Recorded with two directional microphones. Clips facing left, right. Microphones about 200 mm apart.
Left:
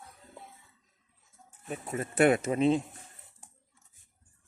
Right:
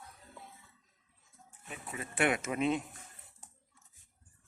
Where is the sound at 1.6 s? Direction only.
40° left (ahead or behind).